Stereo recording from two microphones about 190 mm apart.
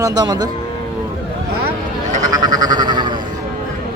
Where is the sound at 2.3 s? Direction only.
20° right (ahead or behind).